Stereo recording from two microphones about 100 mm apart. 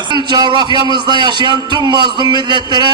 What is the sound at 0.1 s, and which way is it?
A man's voice, 50° right (ahead or behind).